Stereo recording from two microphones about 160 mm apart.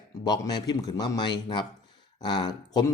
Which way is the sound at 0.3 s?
25° left (ahead or behind).